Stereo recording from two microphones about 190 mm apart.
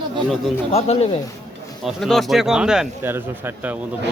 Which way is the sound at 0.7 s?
35° left (ahead or behind).